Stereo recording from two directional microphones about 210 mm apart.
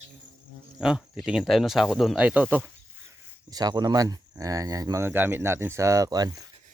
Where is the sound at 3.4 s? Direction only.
20° right (ahead or behind).